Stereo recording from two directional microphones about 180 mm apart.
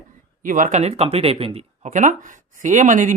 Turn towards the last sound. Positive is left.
turn(degrees=-45)  # may be behind; listen again after turning